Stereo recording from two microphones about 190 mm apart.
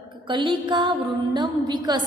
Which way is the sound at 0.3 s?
25° right (ahead or behind).